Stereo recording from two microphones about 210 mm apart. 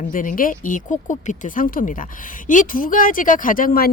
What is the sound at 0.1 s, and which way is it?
Speech, 40° left (ahead or behind).